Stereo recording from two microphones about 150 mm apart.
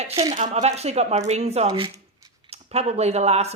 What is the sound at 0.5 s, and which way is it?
Speech, 45° right (ahead or behind).